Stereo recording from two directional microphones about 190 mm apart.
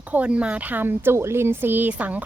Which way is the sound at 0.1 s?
5° right (ahead or behind).